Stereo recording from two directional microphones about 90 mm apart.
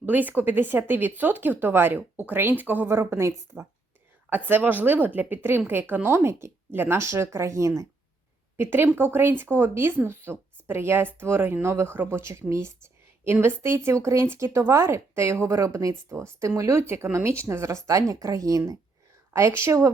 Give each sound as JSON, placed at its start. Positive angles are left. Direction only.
{"t": 0.0, "sound": "speech", "side_deg": -20}